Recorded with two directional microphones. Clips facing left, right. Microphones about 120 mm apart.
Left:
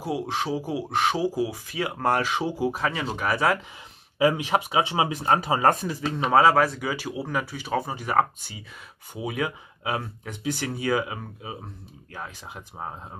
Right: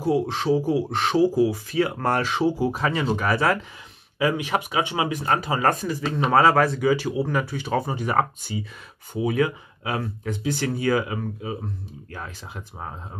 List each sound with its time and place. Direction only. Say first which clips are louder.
0.0 s speech: right 5 dB; 10° left (ahead or behind)
4.2 s speech: left 1 dB; 25° left (ahead or behind)
6.1 s speech: right 1 dB; 10° left (ahead or behind)